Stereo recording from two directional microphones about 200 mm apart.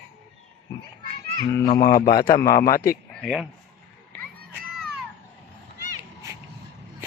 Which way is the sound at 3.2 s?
Centre (ahead or behind).